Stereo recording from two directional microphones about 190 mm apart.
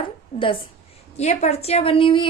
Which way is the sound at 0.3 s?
30° left (ahead or behind).